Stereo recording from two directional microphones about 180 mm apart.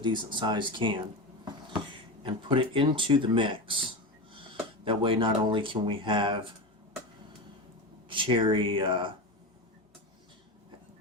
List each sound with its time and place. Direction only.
0.0 s speech: 25° right (ahead or behind)
2.2 s speech: 30° right (ahead or behind)
4.9 s speech: 30° right (ahead or behind)
8.1 s speech: 30° right (ahead or behind)